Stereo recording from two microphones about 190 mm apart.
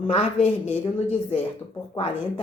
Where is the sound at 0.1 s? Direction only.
35° left (ahead or behind).